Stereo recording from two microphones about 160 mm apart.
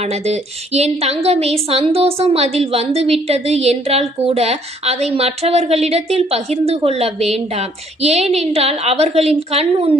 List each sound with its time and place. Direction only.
0.0 s a woman's voice: 40° right (ahead or behind)